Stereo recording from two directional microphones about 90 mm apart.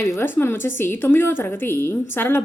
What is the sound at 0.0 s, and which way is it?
A woman's voice, 25° left (ahead or behind).